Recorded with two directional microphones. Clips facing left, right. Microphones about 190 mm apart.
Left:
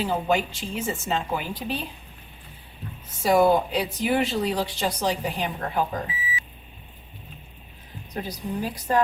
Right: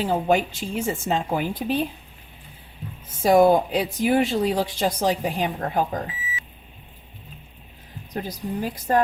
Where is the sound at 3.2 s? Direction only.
50° right (ahead or behind).